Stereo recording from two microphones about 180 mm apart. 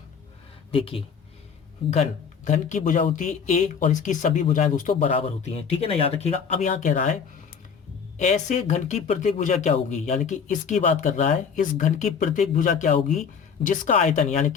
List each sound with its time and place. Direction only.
0.7 s speech: 30° left (ahead or behind)
8.2 s speech: 40° left (ahead or behind)